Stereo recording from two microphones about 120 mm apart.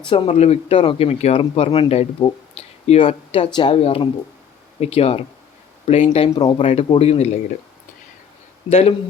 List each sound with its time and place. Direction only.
0.0 s speech: 45° left (ahead or behind)
0.3 s speech: 60° left (ahead or behind)
8.7 s speech: 55° left (ahead or behind)